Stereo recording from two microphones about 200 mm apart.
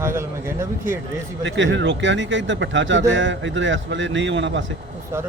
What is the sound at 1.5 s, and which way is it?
Speech, 65° right (ahead or behind).